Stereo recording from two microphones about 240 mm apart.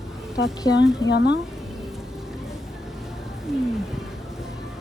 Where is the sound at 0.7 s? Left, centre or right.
Left.